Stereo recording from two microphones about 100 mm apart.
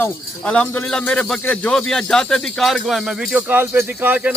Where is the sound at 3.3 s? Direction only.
20° right (ahead or behind).